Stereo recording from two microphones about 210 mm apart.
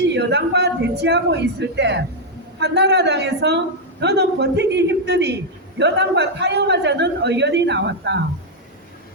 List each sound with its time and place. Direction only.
0.1 s a woman's voice: 55° right (ahead or behind)